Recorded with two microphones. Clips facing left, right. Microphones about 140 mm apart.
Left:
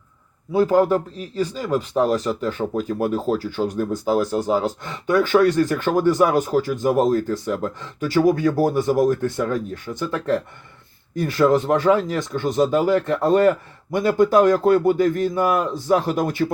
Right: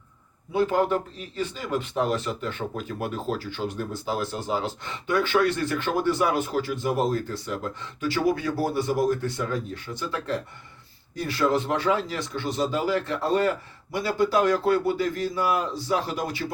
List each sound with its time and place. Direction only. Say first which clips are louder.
0.5 s speech: left 6 dB; 40° left (ahead or behind)